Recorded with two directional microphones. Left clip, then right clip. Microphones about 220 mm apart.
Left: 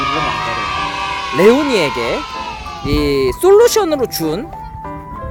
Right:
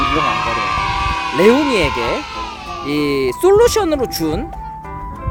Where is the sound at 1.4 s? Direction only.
15° left (ahead or behind).